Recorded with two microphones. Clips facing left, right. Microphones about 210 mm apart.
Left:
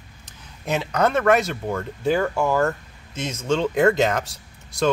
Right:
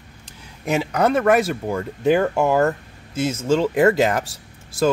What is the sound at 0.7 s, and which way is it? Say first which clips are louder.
Speech: right 2 dB; 10° right (ahead or behind).